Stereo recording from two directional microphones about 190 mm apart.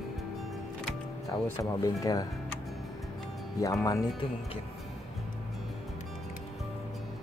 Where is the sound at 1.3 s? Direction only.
15° left (ahead or behind).